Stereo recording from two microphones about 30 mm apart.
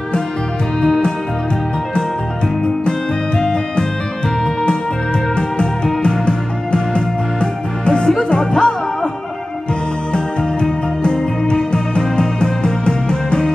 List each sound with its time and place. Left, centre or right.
6.0 s music: left
10.1 s music: left